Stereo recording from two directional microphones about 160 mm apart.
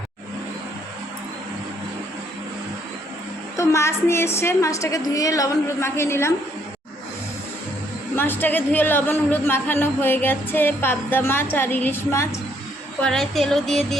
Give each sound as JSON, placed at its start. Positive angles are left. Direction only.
{"t": 3.6, "sound": "speech", "side_deg": 20}
{"t": 8.1, "sound": "speech", "side_deg": 15}
{"t": 13.0, "sound": "music", "side_deg": 5}